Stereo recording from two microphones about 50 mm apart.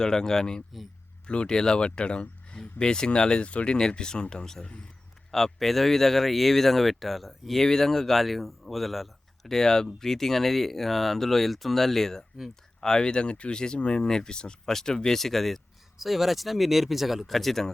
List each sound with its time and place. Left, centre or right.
0.0 s speech: centre